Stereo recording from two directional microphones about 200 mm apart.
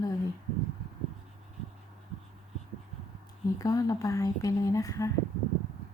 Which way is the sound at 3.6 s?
15° left (ahead or behind).